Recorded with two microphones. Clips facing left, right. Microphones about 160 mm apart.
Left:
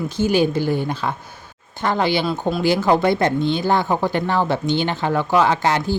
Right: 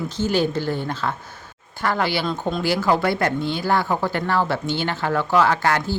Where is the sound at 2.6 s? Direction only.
20° left (ahead or behind).